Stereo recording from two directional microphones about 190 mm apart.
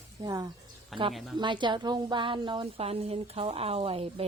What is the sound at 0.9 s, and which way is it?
Speech, centre (ahead or behind).